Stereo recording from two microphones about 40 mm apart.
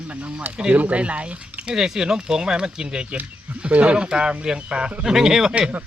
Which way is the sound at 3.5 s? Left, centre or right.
Right.